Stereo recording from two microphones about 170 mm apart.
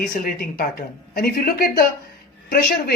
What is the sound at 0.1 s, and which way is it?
Speech, 55° left (ahead or behind).